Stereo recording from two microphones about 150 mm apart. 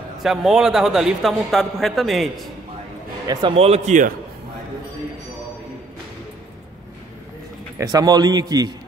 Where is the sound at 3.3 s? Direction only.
30° right (ahead or behind).